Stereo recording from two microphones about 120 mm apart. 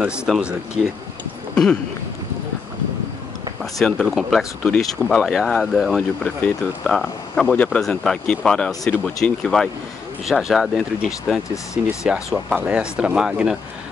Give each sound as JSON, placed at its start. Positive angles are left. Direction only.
{"t": 0.0, "sound": "speech", "side_deg": -10}
{"t": 1.5, "sound": "a sound", "side_deg": 10}
{"t": 3.8, "sound": "speech", "side_deg": 0}
{"t": 11.5, "sound": "speech", "side_deg": 25}
{"t": 12.0, "sound": "speech", "side_deg": -5}